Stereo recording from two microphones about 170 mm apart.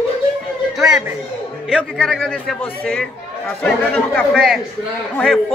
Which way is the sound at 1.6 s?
5° left (ahead or behind).